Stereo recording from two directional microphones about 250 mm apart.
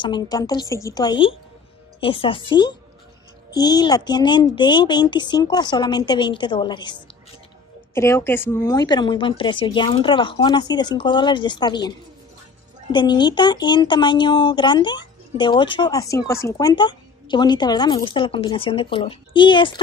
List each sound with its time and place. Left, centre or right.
0.0 s a woman's voice: centre
12.9 s speech: centre